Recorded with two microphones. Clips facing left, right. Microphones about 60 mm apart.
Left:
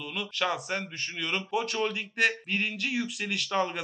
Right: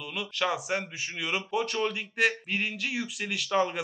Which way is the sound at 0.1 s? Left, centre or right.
Centre.